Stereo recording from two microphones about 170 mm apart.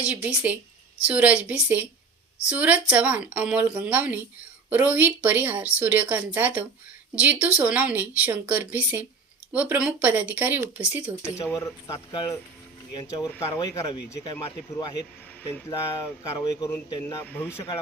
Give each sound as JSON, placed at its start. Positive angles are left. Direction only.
{"t": 0.1, "sound": "a woman's voice", "side_deg": -10}
{"t": 11.3, "sound": "speech", "side_deg": 20}
{"t": 13.3, "sound": "speech", "side_deg": 15}
{"t": 13.6, "sound": "speech", "side_deg": 25}
{"t": 16.4, "sound": "speech", "side_deg": 20}